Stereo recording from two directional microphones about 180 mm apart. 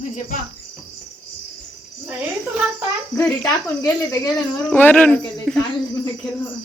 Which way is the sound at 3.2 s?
15° left (ahead or behind).